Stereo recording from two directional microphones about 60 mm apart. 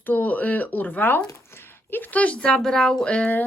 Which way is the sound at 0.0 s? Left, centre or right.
Left.